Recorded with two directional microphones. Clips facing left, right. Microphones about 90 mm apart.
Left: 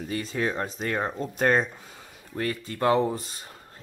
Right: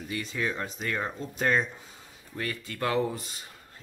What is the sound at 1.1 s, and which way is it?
Speech, 50° left (ahead or behind).